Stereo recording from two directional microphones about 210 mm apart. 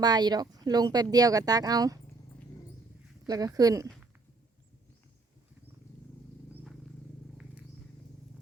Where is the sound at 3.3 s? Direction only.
15° right (ahead or behind).